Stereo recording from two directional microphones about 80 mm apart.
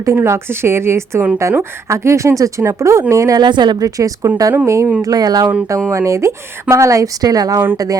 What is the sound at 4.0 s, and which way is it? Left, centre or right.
Speech, right.